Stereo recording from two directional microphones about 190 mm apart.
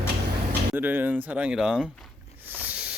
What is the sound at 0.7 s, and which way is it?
Speech, 10° right (ahead or behind).